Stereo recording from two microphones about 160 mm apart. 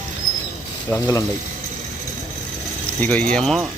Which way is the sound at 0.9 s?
15° left (ahead or behind).